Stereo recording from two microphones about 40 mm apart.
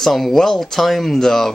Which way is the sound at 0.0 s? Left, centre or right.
Centre.